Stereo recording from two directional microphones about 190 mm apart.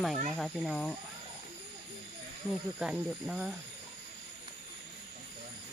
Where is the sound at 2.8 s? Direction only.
5° right (ahead or behind).